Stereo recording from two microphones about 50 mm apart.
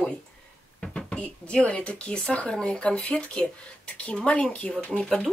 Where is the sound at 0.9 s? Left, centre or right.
Centre.